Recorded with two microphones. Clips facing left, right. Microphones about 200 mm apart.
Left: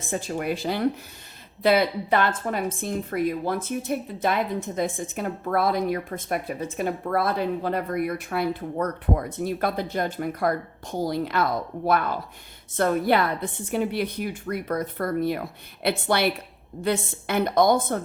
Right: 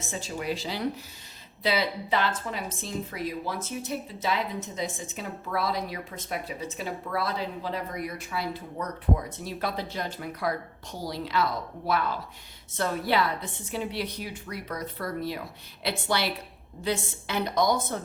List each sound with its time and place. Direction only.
0.0 s a woman's voice: 55° left (ahead or behind)